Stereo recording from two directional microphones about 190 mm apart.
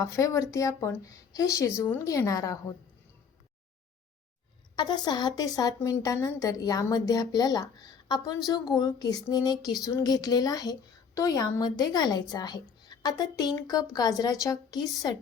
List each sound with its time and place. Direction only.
0.0 s speech: 15° left (ahead or behind)
4.8 s a woman's voice: 20° left (ahead or behind)